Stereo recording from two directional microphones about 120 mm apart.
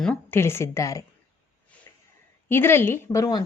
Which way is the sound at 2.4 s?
20° left (ahead or behind).